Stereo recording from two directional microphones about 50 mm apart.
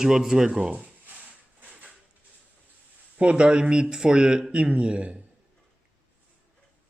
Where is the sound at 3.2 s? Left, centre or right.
Right.